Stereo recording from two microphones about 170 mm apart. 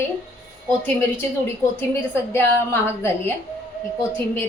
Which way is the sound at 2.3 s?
15° left (ahead or behind).